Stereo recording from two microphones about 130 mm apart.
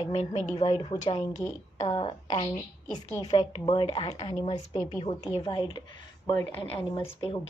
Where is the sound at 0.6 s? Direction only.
45° left (ahead or behind).